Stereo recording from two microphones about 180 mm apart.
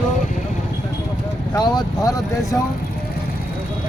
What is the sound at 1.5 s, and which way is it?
Speech, 20° left (ahead or behind).